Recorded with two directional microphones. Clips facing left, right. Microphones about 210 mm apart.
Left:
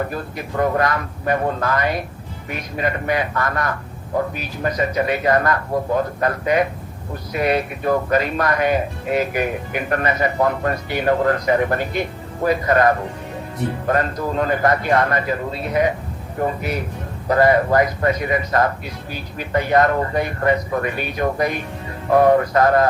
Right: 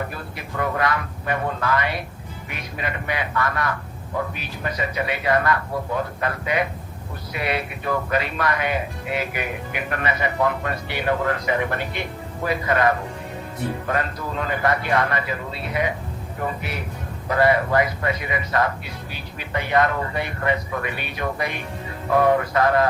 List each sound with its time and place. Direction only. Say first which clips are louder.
0.1 s speech: left 6 dB; 45° left (ahead or behind)